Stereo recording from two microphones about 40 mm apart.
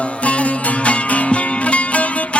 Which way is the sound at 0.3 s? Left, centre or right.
Left.